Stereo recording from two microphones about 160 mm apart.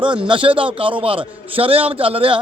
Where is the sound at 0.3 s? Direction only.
30° right (ahead or behind).